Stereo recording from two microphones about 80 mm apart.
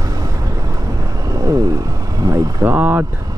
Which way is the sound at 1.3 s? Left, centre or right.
Right.